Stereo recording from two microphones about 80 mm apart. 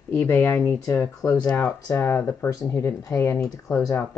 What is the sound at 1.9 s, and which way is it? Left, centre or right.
Speech, left.